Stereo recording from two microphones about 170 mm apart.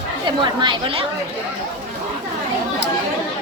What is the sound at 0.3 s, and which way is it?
Speech, 25° right (ahead or behind).